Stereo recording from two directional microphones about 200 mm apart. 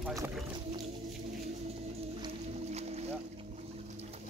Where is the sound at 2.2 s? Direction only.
30° right (ahead or behind).